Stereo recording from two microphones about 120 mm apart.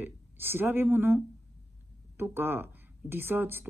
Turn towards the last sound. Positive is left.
turn(degrees=-20)  # may be behind; listen again after turning